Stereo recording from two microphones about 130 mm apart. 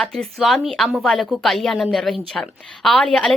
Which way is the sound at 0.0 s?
5° left (ahead or behind).